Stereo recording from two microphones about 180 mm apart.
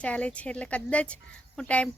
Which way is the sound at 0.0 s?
5° left (ahead or behind).